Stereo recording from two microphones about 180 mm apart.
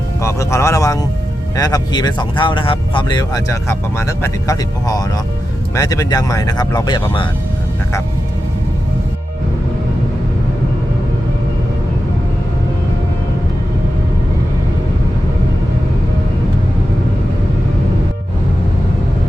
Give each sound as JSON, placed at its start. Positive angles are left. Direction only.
{"t": 0.2, "sound": "speech", "side_deg": 15}